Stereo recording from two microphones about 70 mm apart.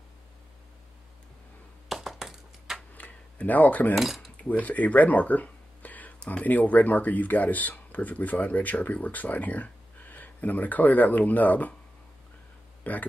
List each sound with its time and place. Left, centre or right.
1.9 s a sound: centre
2.9 s camera: left
3.9 s cutlery: centre
4.5 s speech: left
12.9 s speech: left